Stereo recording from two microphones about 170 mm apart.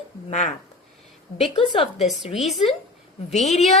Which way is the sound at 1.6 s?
30° left (ahead or behind).